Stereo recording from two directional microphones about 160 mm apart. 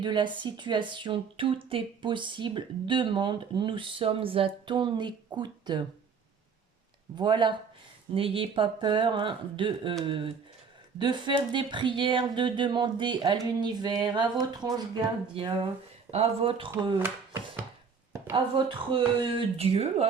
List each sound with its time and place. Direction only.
0.0 s speech: 30° right (ahead or behind)
7.2 s speech: 30° right (ahead or behind)
18.5 s speech: 35° right (ahead or behind)